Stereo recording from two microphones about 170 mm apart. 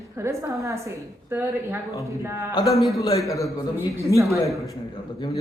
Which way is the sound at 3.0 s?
20° left (ahead or behind).